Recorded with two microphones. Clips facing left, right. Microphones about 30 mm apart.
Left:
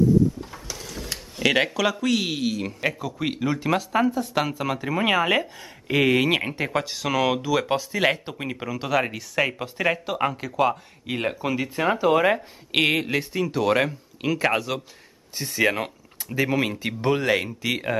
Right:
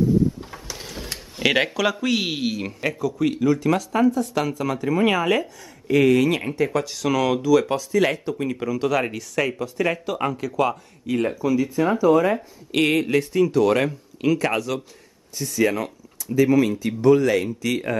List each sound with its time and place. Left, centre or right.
0.7 s mechanisms: right
1.1 s speech: centre
3.0 s speech: left
8.5 s speech: centre
11.1 s speech: left
12.9 s speech: centre
15.3 s speech: left
17.5 s speech: left